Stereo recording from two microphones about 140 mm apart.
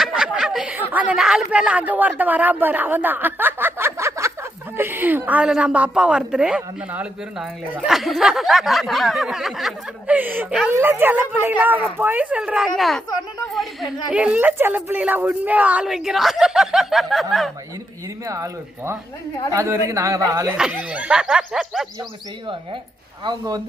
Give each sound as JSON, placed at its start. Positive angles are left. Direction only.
{"t": 0.0, "sound": "a woman's voice", "side_deg": -5}
{"t": 10.2, "sound": "a woman's voice", "side_deg": -15}
{"t": 18.3, "sound": "speech", "side_deg": -20}
{"t": 20.6, "sound": "a woman's voice", "side_deg": -10}